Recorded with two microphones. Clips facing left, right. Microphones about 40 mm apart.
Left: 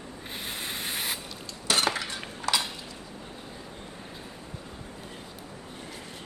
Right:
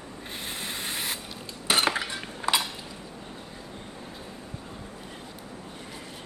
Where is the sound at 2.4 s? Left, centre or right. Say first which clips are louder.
Right 2 dB; right.